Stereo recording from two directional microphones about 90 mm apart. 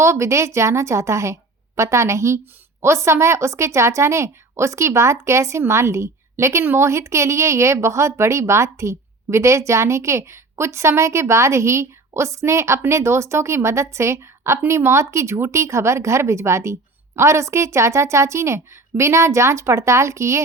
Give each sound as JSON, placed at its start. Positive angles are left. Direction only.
{"t": 0.0, "sound": "a woman's voice", "side_deg": -30}